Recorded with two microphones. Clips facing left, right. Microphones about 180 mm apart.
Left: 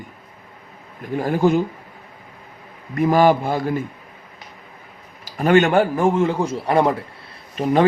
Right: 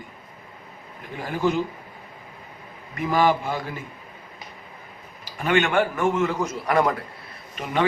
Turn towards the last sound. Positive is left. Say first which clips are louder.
# left 7 dB
turn(degrees=35)  # may be behind; listen again after turning